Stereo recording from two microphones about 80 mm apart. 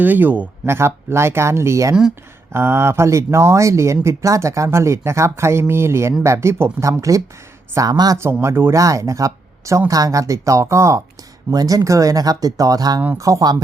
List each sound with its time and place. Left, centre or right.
0.0 s speech: right
7.8 s speech: right
8.2 s speech: right
8.7 s speech: right
11.5 s speech: right